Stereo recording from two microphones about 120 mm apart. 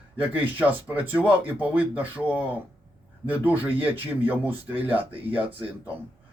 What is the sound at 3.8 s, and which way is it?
Speech, 50° right (ahead or behind).